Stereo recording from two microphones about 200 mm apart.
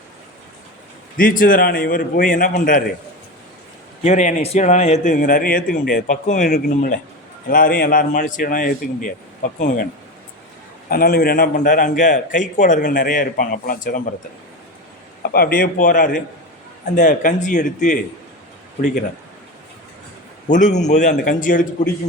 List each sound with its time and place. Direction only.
1.1 s a man's voice: 45° left (ahead or behind)
4.0 s a man's voice: 35° left (ahead or behind)
10.8 s a man's voice: 45° left (ahead or behind)
15.2 s a man's voice: 45° left (ahead or behind)
20.5 s a man's voice: 40° left (ahead or behind)